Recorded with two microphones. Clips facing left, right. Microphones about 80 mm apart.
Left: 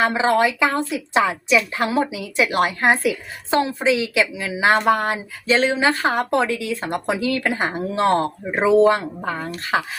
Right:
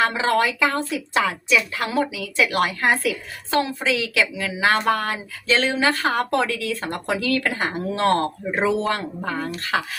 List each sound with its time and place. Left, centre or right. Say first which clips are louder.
0.0 s a woman's voice: left 2 dB; left